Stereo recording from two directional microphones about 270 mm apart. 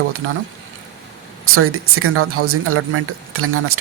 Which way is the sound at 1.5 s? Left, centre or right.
Right.